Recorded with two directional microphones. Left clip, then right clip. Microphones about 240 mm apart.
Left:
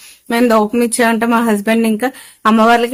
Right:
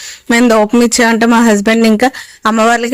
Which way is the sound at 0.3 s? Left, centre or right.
Right.